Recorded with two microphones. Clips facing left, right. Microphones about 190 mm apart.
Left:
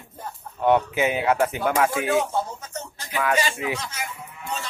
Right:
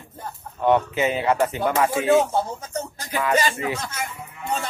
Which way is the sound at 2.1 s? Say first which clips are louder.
Right 4 dB; 35° right (ahead or behind).